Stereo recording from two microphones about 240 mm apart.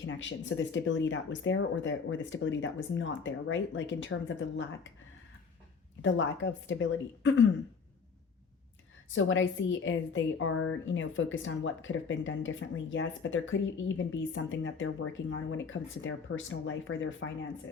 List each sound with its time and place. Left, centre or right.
0.0 s a woman's voice: left
6.0 s a woman's voice: left
9.0 s a woman's voice: left